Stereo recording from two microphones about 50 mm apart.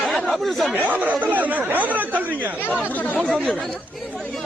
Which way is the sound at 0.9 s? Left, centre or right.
Right.